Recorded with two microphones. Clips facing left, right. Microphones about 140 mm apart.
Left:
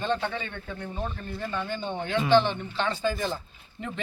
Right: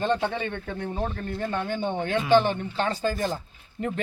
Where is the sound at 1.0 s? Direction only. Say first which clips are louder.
Right 3 dB; 50° right (ahead or behind).